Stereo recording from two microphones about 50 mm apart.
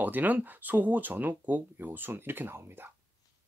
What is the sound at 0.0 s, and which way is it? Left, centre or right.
Speech, right.